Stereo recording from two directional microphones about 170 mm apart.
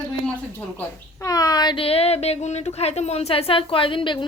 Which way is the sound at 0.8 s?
20° left (ahead or behind).